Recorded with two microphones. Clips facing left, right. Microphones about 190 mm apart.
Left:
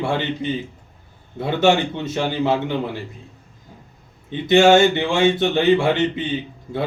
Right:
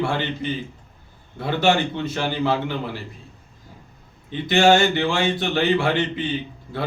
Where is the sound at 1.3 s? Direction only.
20° left (ahead or behind).